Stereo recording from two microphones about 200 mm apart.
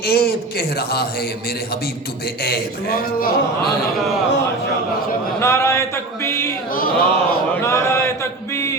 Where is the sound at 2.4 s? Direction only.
50° left (ahead or behind).